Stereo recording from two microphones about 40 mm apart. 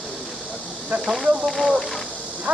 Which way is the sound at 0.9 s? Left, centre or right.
Right.